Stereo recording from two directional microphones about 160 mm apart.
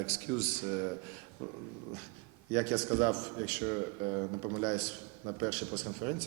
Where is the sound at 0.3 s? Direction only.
20° right (ahead or behind).